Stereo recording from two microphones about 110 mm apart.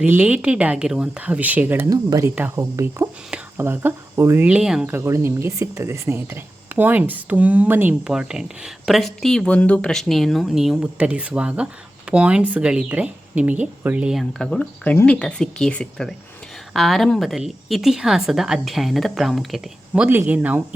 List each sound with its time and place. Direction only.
0.0 s speech: 15° right (ahead or behind)
1.9 s speech: 30° right (ahead or behind)
4.4 s speech: 5° right (ahead or behind)
4.9 s speech: 20° right (ahead or behind); by 20.1 s 5° right (ahead or behind)
20.1 s speech: 15° right (ahead or behind)